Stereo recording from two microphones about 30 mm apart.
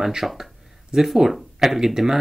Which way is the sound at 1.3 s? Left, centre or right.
Centre.